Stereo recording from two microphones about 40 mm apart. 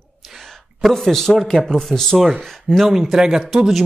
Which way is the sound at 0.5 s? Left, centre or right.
Centre.